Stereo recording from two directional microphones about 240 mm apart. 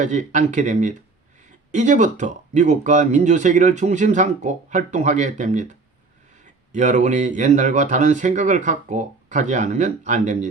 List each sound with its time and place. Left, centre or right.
0.0 s speech: right
6.7 s speech: right